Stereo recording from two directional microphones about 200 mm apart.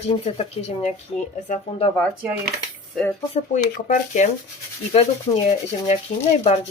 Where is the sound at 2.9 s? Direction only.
5° left (ahead or behind).